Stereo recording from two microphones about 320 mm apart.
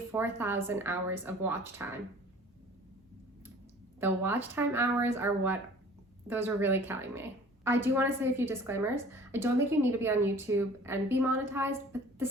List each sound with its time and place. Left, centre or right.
0.1 s a woman's voice: centre
4.0 s a woman's voice: centre